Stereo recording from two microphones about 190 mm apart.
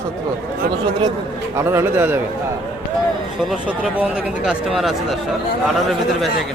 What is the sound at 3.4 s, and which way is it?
Speech, centre (ahead or behind).